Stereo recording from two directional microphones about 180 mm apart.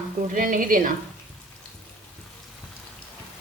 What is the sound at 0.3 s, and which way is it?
Speech, 50° right (ahead or behind).